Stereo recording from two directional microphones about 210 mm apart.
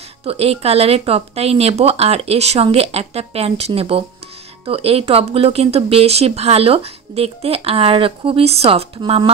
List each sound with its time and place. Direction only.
0.2 s speech: 30° right (ahead or behind)